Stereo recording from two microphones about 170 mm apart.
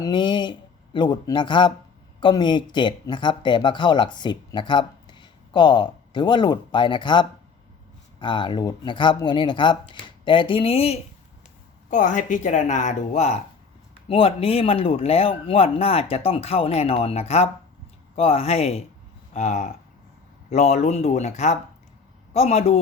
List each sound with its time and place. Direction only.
0.0 s speech: 25° left (ahead or behind)
11.9 s a man's voice: 50° left (ahead or behind)